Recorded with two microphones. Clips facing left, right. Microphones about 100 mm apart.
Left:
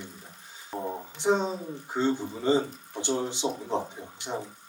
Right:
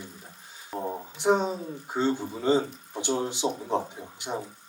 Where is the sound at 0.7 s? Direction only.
5° right (ahead or behind).